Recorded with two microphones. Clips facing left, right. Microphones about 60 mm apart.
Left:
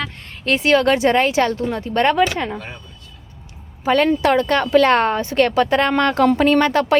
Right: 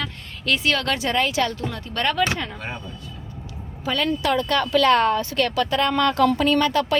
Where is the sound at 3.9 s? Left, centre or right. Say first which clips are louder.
Left 7 dB; left.